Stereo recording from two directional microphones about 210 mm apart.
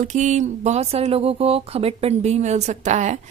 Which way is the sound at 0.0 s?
35° right (ahead or behind).